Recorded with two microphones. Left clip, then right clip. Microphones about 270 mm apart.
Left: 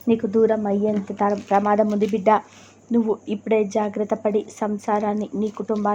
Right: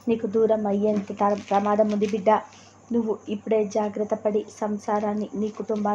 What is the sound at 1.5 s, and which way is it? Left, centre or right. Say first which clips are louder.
Speech: left 5 dB; centre.